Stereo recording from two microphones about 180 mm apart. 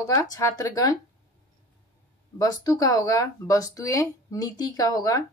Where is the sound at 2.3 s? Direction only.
20° left (ahead or behind).